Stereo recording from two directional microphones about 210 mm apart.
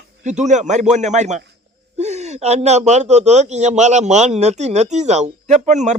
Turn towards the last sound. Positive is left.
turn(degrees=-35)  # may be behind; listen again after turning